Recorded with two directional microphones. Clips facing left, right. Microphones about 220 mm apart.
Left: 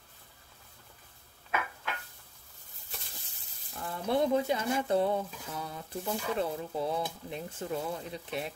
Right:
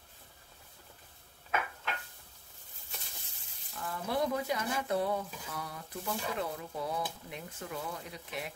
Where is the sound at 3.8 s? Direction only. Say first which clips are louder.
Left 4 dB; 25° left (ahead or behind).